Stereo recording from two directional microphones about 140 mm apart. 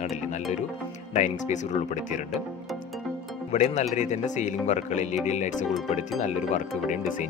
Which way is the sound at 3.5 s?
55° left (ahead or behind).